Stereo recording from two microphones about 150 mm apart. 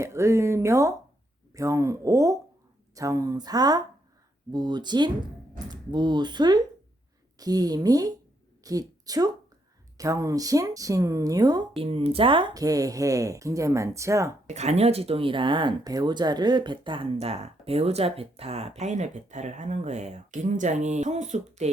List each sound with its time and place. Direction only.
0.0 s a woman's voice: 20° right (ahead or behind)
11.8 s speech: 40° right (ahead or behind); by 14.3 s 20° right (ahead or behind)
14.4 s speech: 50° right (ahead or behind)